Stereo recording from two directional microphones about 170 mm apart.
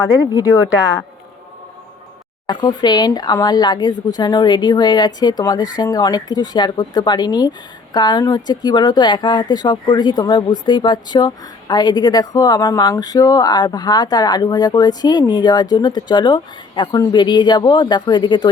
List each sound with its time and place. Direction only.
0.0 s speech: 20° left (ahead or behind)
2.5 s speech: 25° left (ahead or behind)